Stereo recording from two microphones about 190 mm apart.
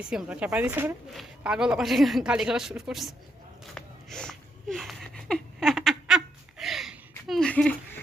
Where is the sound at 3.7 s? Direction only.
5° left (ahead or behind).